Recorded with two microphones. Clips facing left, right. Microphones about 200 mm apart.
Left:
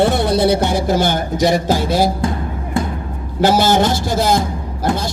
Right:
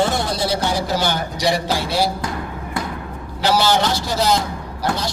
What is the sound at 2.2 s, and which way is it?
Music, 25° left (ahead or behind).